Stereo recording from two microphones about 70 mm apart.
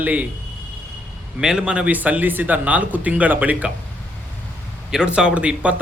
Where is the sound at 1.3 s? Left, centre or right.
Centre.